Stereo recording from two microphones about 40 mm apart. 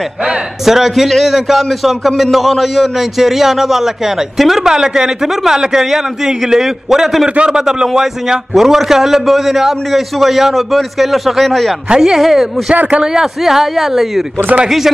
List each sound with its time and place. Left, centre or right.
0.7 s a man's voice: centre
7.2 s a man's voice: right
7.6 s a man's voice: centre
8.5 s a man's voice: centre
11.9 s a man's voice: centre
12.2 s a man's voice: centre
13.0 s a man's voice: centre
14.5 s a man's voice: right